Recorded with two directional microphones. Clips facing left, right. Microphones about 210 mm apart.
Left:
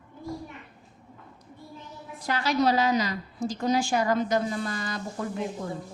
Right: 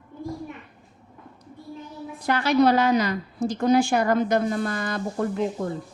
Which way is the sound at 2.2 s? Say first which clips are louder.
Right 5 dB; 60° right (ahead or behind).